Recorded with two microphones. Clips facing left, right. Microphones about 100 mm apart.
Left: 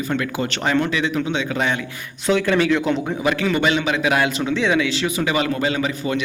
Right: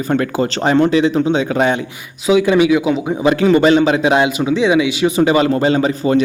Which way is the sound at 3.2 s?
30° right (ahead or behind).